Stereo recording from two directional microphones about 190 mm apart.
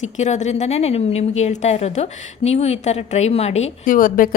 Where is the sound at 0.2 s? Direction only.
40° left (ahead or behind).